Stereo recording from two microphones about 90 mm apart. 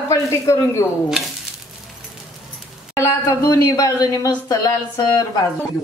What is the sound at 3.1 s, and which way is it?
Speech, 45° left (ahead or behind).